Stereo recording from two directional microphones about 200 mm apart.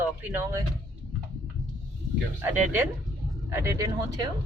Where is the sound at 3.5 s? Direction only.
15° right (ahead or behind).